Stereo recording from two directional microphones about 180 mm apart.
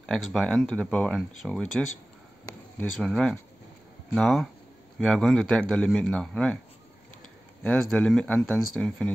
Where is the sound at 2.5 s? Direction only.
20° left (ahead or behind).